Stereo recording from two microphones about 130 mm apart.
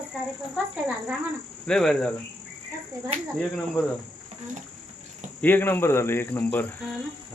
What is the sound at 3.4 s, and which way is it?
Speech, 5° left (ahead or behind).